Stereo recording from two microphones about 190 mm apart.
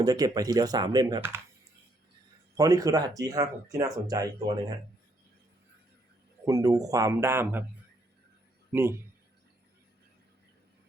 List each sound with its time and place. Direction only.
0.0 s speech: 20° right (ahead or behind)
2.6 s speech: 20° right (ahead or behind)
6.4 s speech: 20° right (ahead or behind)
8.7 s speech: 10° right (ahead or behind)